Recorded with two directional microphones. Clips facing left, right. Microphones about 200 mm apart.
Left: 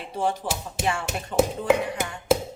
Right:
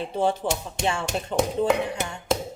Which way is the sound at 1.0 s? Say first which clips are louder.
Left 1 dB; 5° left (ahead or behind).